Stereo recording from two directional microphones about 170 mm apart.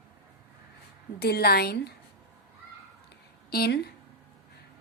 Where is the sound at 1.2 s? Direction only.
70° left (ahead or behind).